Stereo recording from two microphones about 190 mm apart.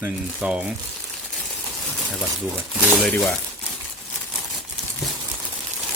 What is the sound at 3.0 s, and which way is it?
Speech, centre (ahead or behind).